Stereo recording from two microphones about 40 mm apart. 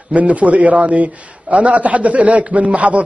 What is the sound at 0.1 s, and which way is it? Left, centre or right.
A man's voice, right.